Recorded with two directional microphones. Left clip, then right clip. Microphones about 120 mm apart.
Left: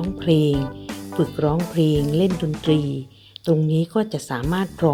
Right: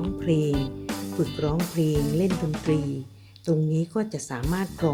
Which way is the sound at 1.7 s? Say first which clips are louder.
Left 5 dB; 30° left (ahead or behind).